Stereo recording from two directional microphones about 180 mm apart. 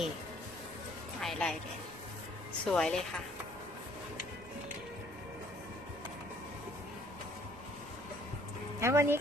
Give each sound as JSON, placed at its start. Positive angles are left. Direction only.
{"t": 1.2, "sound": "a woman's voice", "side_deg": 5}
{"t": 2.6, "sound": "a woman's voice", "side_deg": 5}
{"t": 8.8, "sound": "speech", "side_deg": -15}